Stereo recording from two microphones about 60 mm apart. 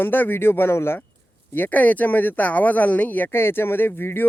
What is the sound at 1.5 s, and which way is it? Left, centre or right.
Speech, left.